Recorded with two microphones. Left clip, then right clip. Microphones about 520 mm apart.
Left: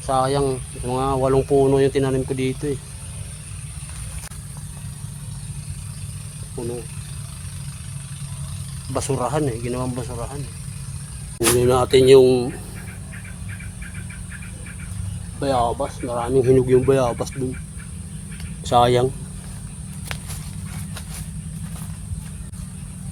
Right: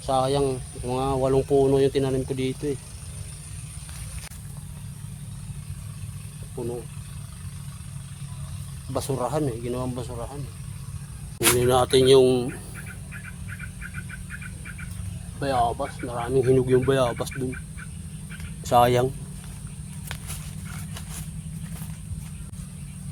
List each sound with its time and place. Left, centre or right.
0.0 s speech: right
8.9 s speech: right
11.4 s speech: right
15.4 s speech: right
16.6 s speech: right
18.6 s speech: right